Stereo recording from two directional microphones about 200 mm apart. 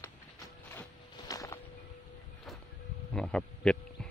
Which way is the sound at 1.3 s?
15° left (ahead or behind).